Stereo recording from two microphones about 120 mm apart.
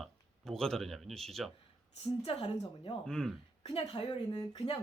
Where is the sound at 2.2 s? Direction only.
50° left (ahead or behind).